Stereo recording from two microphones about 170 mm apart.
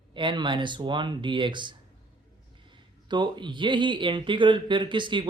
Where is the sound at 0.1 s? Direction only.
30° right (ahead or behind).